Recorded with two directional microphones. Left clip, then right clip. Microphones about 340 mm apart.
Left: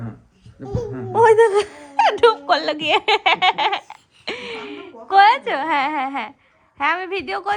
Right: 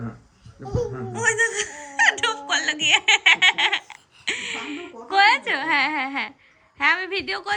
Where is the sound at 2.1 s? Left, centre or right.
Centre.